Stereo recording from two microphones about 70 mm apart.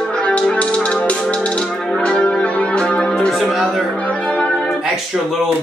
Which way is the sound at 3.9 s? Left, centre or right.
Centre.